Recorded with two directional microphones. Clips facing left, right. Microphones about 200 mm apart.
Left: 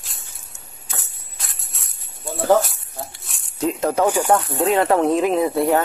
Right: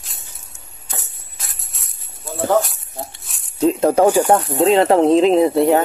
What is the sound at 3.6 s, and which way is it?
Speech, 30° right (ahead or behind).